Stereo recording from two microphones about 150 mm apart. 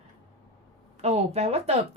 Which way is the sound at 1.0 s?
45° right (ahead or behind).